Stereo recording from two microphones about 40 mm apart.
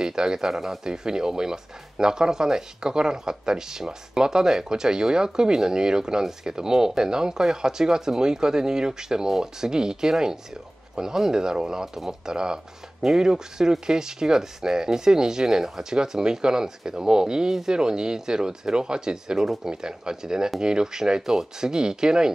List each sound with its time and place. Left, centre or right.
0.0 s speech: centre